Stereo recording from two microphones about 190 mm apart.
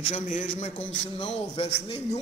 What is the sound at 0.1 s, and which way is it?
A man's voice, 40° left (ahead or behind).